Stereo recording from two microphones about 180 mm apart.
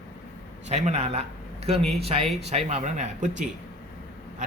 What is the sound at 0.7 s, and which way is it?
A man's voice, 35° right (ahead or behind).